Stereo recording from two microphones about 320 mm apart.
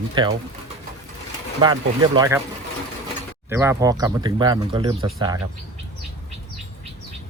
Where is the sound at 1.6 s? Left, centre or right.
Centre.